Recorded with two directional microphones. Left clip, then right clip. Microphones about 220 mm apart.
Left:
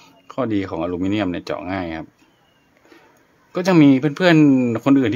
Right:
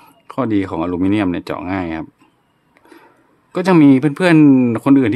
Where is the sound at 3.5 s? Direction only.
15° right (ahead or behind).